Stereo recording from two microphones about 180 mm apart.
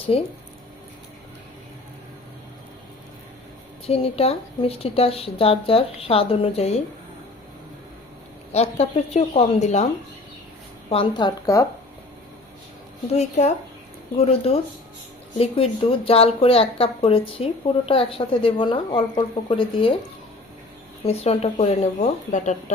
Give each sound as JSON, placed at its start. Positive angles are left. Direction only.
{"t": 0.1, "sound": "speech", "side_deg": 35}
{"t": 3.8, "sound": "speech", "side_deg": 35}
{"t": 8.5, "sound": "a woman's voice", "side_deg": 35}
{"t": 13.1, "sound": "speech", "side_deg": 40}
{"t": 21.0, "sound": "speech", "side_deg": 35}